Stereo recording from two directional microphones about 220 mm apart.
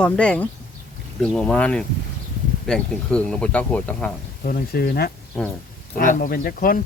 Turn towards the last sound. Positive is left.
turn(degrees=40)  # may be behind; listen again after turning